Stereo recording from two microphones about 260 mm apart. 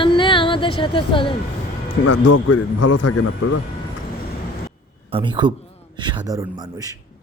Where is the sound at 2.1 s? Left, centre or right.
Left.